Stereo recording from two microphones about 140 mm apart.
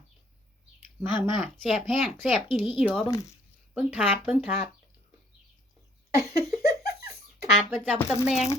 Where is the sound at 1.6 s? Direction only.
Centre (ahead or behind).